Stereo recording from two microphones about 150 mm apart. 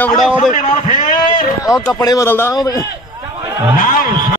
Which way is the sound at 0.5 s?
60° left (ahead or behind).